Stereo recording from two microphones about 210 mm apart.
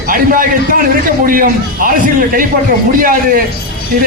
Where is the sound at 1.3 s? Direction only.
40° right (ahead or behind).